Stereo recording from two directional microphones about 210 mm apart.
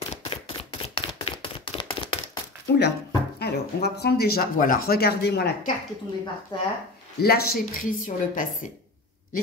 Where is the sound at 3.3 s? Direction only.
50° left (ahead or behind).